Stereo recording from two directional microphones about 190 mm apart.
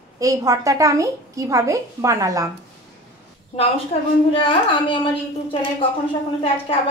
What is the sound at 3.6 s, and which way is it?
A woman's voice, 30° left (ahead or behind).